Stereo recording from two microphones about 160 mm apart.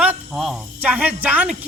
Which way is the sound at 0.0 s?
5° right (ahead or behind).